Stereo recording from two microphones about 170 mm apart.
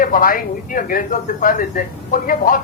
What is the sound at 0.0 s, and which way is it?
A woman's voice, 55° left (ahead or behind).